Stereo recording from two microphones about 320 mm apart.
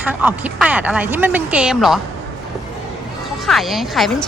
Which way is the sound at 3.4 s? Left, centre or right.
Centre.